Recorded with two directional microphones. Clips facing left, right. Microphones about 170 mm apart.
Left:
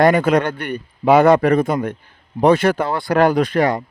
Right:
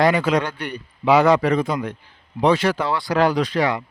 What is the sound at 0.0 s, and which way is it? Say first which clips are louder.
Speech: left 4 dB; 50° left (ahead or behind).